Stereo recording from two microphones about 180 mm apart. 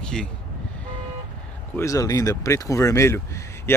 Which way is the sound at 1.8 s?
20° left (ahead or behind).